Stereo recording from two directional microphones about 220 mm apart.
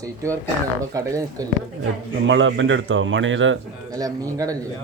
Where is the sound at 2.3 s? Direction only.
60° right (ahead or behind).